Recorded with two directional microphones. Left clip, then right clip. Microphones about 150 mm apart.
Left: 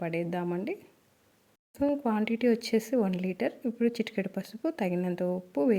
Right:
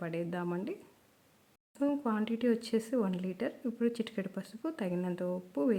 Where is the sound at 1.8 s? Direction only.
20° left (ahead or behind).